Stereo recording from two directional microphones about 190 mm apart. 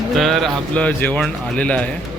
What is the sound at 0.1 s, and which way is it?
Speech, centre (ahead or behind).